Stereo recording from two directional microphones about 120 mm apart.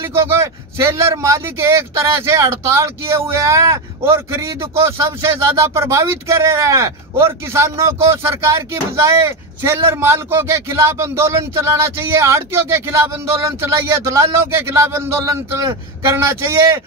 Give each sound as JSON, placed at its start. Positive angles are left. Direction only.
{"t": 0.1, "sound": "a man's voice", "side_deg": -20}